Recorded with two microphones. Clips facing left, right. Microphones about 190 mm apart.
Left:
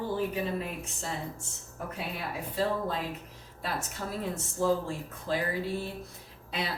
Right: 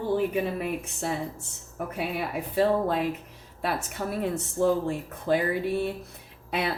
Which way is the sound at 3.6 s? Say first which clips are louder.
Right 6 dB; 60° right (ahead or behind).